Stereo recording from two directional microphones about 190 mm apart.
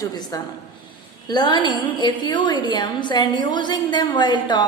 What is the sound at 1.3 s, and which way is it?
A woman's voice, 25° left (ahead or behind).